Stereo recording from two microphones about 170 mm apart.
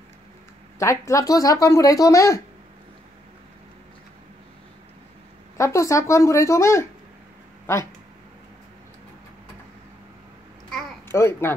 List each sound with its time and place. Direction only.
0.7 s speech: 20° left (ahead or behind)
5.6 s speech: 15° left (ahead or behind)
11.1 s a child's voice: 15° left (ahead or behind)